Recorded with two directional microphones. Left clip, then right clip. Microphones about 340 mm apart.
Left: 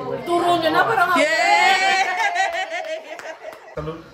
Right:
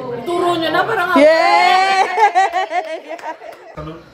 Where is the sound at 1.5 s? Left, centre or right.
Centre.